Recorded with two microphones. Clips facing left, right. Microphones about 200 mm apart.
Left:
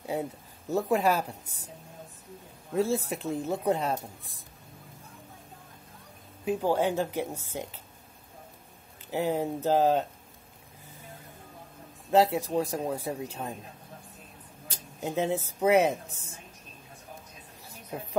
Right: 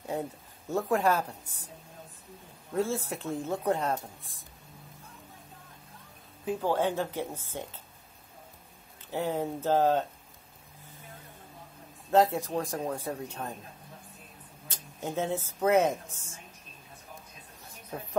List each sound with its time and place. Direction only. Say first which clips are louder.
0.0 s a sound: left 2 dB; 10° left (ahead or behind)
0.7 s speech: left 1 dB; 10° left (ahead or behind)
2.9 s speech: left 3 dB; 10° left (ahead or behind)
6.4 s speech: left 2 dB; 15° left (ahead or behind)
9.1 s speech: left 2 dB; 15° left (ahead or behind)
12.1 s speech: left 1 dB; 15° left (ahead or behind)
15.0 s speech: left 3 dB; 10° left (ahead or behind)
15.9 s a woman's voice: left 1 dB; 35° left (ahead or behind)